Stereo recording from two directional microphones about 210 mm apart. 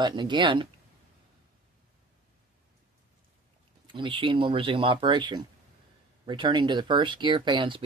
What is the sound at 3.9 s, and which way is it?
Speech, 25° right (ahead or behind).